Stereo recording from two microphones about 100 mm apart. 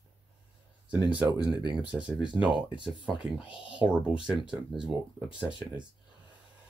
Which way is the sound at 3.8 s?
10° right (ahead or behind).